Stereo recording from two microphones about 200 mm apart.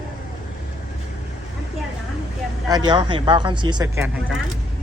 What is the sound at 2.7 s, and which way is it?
Speech, 20° right (ahead or behind).